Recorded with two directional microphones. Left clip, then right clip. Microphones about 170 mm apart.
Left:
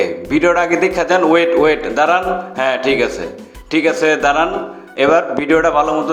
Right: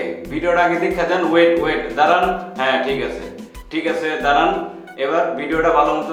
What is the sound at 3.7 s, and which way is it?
Speech, 40° left (ahead or behind).